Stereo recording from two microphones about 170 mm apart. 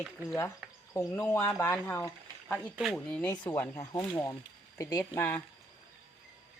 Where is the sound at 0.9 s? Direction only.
15° left (ahead or behind).